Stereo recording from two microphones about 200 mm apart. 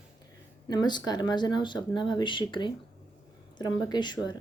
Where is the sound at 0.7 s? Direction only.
20° left (ahead or behind).